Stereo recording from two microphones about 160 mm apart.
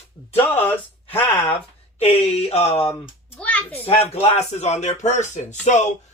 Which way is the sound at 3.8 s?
40° left (ahead or behind).